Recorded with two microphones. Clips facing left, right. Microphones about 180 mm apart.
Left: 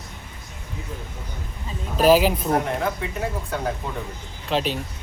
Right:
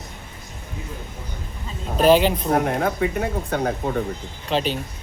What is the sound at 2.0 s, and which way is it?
Speech, 5° left (ahead or behind).